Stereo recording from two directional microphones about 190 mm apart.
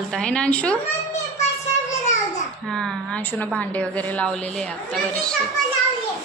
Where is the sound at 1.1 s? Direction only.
35° left (ahead or behind).